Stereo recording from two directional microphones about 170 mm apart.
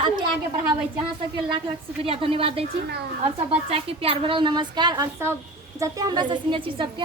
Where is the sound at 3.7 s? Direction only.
35° right (ahead or behind).